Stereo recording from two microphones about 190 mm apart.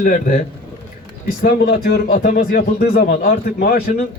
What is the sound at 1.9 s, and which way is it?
A man's voice, 60° left (ahead or behind).